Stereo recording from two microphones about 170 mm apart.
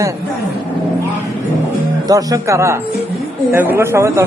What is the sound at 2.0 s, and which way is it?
A man's voice, 20° right (ahead or behind).